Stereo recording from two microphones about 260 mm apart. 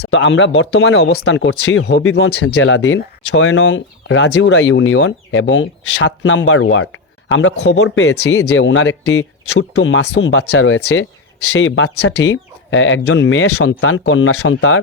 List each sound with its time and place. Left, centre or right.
0.0 s speech: left